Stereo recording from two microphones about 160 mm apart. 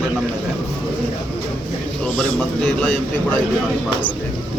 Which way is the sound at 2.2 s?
5° left (ahead or behind).